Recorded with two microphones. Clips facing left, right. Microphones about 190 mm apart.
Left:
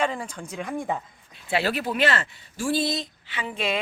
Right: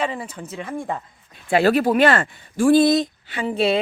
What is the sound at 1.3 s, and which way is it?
Speech, 45° right (ahead or behind).